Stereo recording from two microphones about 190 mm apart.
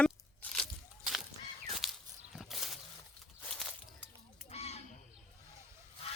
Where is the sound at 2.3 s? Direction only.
Centre (ahead or behind).